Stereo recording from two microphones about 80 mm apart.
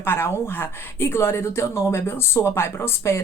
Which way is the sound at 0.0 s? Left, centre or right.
Left.